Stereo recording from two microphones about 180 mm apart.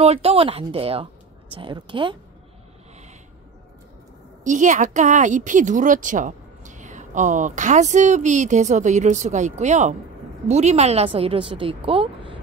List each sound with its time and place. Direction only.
0.0 s a woman's voice: 35° right (ahead or behind)
4.5 s a woman's voice: 45° right (ahead or behind)